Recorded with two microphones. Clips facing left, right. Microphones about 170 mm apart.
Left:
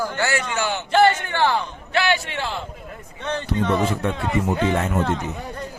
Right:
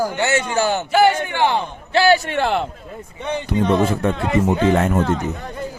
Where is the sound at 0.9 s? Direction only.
10° right (ahead or behind).